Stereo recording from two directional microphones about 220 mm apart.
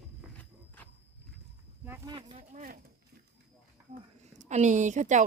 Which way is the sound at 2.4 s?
40° right (ahead or behind).